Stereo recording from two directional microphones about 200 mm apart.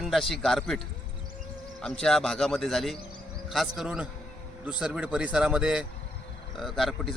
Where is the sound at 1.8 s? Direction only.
Centre (ahead or behind).